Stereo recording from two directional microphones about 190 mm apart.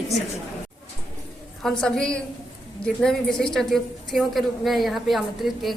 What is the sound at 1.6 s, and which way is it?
A woman's voice, 5° left (ahead or behind).